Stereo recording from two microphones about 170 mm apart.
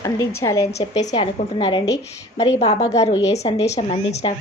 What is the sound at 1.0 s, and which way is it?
A woman's voice, 40° left (ahead or behind).